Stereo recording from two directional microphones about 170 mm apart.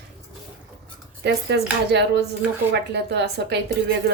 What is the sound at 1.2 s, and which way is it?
Speech, 85° right.